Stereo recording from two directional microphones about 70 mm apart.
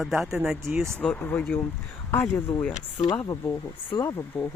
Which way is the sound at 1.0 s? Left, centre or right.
Left.